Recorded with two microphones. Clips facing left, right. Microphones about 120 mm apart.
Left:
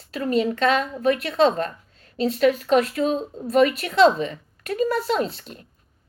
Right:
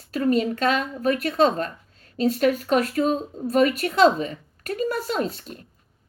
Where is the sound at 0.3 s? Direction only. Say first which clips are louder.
Left 1 dB; 45° right (ahead or behind).